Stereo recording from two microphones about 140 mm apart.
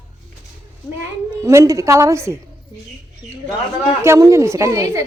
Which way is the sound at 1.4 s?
20° right (ahead or behind).